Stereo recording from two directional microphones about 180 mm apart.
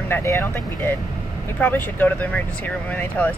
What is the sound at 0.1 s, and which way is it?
Speech, 15° left (ahead or behind).